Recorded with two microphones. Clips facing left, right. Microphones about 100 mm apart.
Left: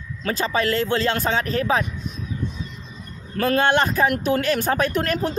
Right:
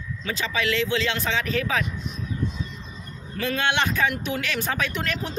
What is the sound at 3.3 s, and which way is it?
Speech, 45° left (ahead or behind).